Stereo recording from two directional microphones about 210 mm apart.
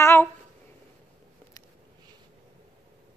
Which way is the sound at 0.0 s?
10° left (ahead or behind).